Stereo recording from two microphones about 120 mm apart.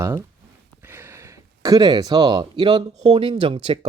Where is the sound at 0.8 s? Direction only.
20° right (ahead or behind).